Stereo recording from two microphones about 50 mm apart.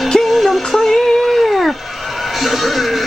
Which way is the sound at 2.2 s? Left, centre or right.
Centre.